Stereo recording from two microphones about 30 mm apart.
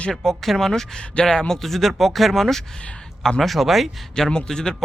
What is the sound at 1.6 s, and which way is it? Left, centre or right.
Speech, centre.